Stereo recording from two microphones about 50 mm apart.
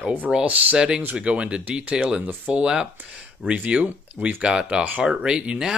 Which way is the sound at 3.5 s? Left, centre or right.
Right.